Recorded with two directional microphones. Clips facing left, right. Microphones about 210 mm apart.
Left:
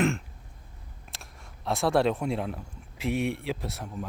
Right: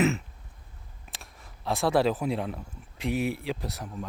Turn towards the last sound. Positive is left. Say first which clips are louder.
# even
turn(degrees=0)  # may be behind; listen again after turning